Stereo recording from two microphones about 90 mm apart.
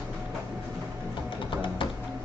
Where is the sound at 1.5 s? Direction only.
65° left (ahead or behind).